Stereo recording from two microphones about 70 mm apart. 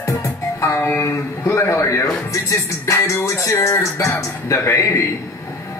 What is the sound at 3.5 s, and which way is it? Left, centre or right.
A man's voice, left.